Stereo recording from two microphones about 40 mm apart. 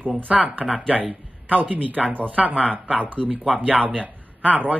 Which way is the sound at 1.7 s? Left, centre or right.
Right.